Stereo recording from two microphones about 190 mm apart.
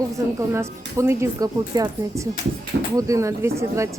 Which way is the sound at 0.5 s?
15° right (ahead or behind).